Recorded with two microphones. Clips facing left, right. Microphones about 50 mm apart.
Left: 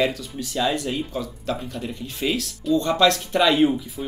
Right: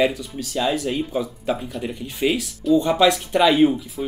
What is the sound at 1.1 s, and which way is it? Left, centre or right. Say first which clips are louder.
Speech: right 4 dB; centre.